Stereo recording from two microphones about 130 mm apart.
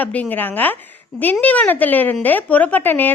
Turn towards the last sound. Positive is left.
turn(degrees=15)  # may be behind; listen again after turning